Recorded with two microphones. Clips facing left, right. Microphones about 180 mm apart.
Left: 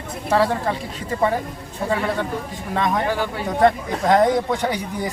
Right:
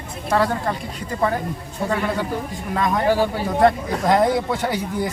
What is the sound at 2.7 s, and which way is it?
A man's voice, centre (ahead or behind).